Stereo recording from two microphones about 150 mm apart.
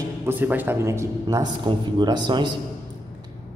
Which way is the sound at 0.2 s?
10° right (ahead or behind).